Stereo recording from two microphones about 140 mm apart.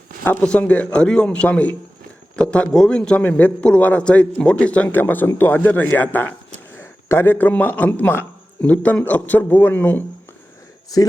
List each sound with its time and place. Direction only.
0.3 s a man's voice: 10° left (ahead or behind)